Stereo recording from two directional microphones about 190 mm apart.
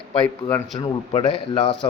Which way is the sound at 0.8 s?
25° left (ahead or behind).